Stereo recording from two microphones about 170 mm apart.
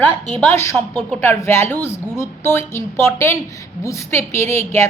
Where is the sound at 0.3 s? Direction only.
10° left (ahead or behind).